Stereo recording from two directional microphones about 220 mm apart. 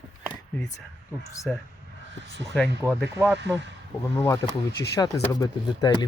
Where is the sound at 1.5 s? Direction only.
Centre (ahead or behind).